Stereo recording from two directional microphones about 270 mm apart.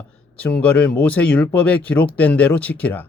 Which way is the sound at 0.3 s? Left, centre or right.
Centre.